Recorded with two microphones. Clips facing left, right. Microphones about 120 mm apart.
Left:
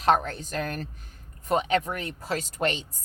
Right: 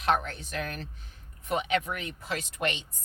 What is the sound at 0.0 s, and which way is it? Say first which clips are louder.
Speech: left 5 dB; 40° left (ahead or behind).